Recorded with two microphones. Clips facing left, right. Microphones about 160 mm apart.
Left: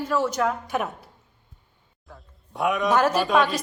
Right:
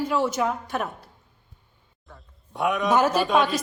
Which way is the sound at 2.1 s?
Centre (ahead or behind).